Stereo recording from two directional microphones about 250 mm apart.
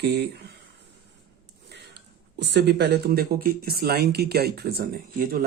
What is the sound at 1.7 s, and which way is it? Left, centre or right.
Speech, right.